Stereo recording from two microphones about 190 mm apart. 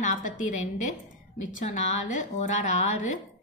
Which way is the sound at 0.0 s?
40° left (ahead or behind).